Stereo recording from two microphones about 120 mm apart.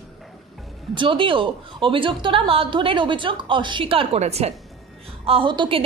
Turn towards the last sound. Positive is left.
turn(degrees=-45)  # may be behind; listen again after turning